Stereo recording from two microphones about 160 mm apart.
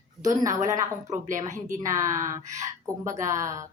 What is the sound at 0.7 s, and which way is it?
Speech, 55° right (ahead or behind).